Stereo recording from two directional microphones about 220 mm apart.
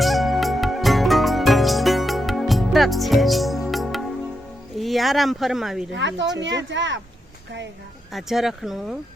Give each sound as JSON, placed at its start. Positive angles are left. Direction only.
{"t": 0.0, "sound": "music", "side_deg": 0}
{"t": 4.8, "sound": "speech", "side_deg": 0}
{"t": 5.9, "sound": "speech", "side_deg": -55}
{"t": 8.1, "sound": "speech", "side_deg": 0}